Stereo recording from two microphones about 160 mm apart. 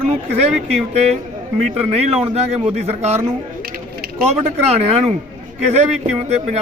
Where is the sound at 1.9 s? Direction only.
40° right (ahead or behind).